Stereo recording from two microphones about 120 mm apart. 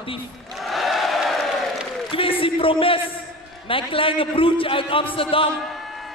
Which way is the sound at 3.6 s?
50° left (ahead or behind).